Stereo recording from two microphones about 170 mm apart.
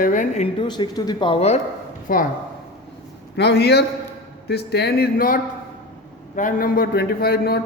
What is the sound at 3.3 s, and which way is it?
A man's voice, 75° left (ahead or behind).